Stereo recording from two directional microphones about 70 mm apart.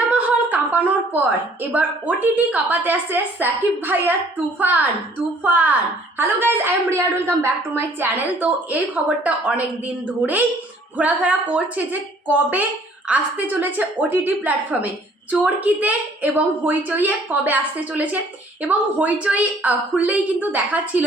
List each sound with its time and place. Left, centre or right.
0.1 s a sound: right
1.7 s a woman's voice: right
5.4 s a woman's voice: right